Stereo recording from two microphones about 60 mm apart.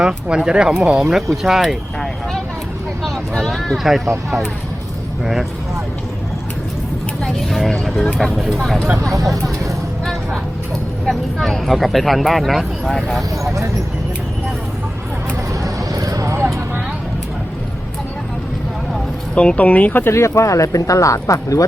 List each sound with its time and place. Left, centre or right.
0.0 s speech: centre
3.0 s speech: centre
5.2 s speech: centre
7.9 s speech: centre
11.0 s speech: centre
12.9 s speech: centre
13.4 s speech: right
15.6 s a sound: right
19.3 s speech: centre; by 20.1 s left
20.1 s speech: left